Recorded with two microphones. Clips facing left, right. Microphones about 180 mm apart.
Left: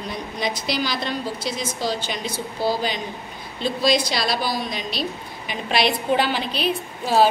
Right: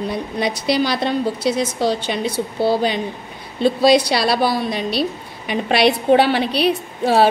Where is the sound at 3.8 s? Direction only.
65° right (ahead or behind).